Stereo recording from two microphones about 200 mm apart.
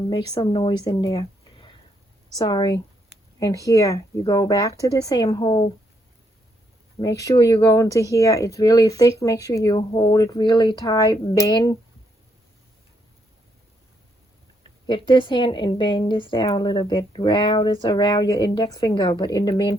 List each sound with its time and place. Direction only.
0.1 s a woman's voice: 25° left (ahead or behind)
7.0 s speech: 15° left (ahead or behind)
14.8 s a woman's voice: 25° left (ahead or behind)